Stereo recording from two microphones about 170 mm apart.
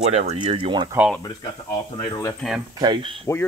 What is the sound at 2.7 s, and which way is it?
Speech, 30° right (ahead or behind).